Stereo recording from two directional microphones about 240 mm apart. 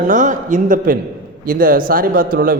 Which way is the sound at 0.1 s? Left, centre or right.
Right.